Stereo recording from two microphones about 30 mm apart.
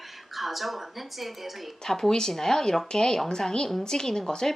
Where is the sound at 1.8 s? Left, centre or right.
Centre.